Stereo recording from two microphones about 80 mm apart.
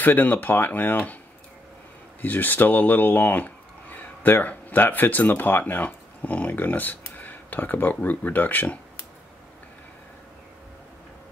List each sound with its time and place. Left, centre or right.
0.0 s speech: left
2.2 s speech: left